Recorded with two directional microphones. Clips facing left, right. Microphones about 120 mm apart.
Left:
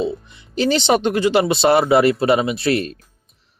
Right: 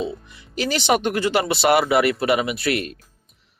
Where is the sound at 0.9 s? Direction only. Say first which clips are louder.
Left 3 dB; 25° left (ahead or behind).